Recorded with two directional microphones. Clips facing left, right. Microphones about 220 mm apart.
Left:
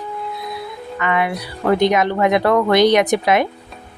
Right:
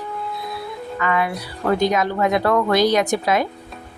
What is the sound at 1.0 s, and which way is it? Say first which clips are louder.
Speech: left 2 dB; 15° left (ahead or behind).